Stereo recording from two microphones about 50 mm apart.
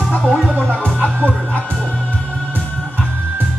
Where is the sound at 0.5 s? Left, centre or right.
Left.